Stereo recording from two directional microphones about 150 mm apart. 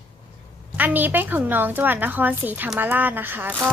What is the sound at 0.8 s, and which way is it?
A woman's voice, 10° right (ahead or behind).